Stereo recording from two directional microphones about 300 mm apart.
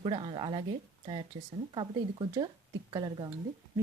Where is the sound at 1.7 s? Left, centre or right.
Centre.